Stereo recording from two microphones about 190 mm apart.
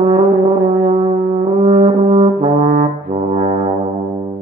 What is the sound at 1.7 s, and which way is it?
Brass instrument, 30° right (ahead or behind).